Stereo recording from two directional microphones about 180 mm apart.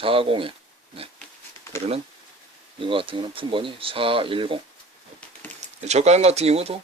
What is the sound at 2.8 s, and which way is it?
Speech, 30° right (ahead or behind).